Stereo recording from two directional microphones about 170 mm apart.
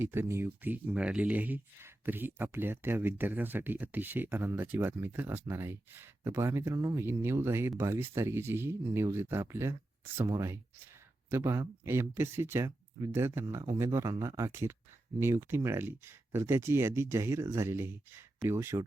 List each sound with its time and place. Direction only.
0.0 s speech: 15° right (ahead or behind)